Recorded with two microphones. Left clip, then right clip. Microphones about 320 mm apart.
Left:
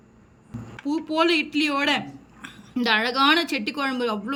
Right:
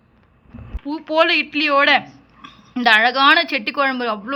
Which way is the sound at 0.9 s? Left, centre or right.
Centre.